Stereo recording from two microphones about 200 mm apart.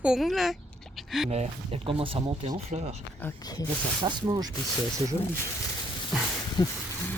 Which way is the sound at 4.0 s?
20° right (ahead or behind).